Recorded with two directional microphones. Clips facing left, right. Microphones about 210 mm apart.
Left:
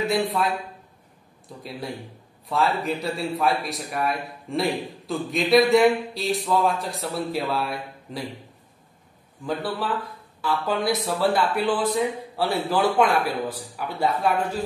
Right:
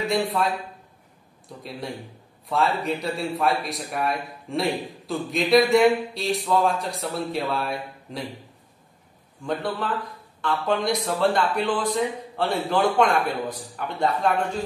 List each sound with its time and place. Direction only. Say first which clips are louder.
0.1 s a man's voice: even; centre (ahead or behind)
1.6 s a man's voice: even; centre (ahead or behind)
9.4 s a man's voice: even; centre (ahead or behind)